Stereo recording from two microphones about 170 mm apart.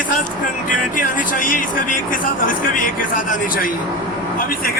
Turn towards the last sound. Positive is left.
turn(degrees=50)  # may be behind; listen again after turning